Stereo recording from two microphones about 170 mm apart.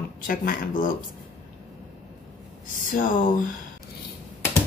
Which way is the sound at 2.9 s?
55° left (ahead or behind).